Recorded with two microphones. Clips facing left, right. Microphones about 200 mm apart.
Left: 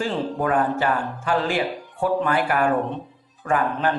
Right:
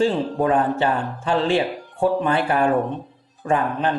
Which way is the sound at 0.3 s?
25° right (ahead or behind).